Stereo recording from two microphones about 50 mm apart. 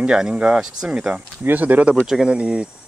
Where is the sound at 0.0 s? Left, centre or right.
Centre.